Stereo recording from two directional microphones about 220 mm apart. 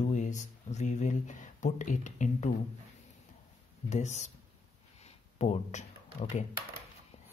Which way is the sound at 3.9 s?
30° left (ahead or behind).